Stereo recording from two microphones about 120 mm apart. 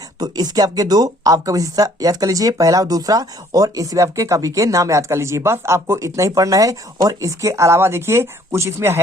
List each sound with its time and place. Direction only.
0.2 s speech: 30° right (ahead or behind)